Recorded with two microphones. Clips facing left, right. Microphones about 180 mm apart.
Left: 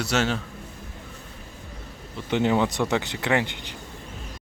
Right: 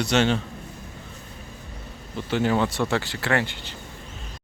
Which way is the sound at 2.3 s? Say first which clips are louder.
Left 1 dB; 20° left (ahead or behind).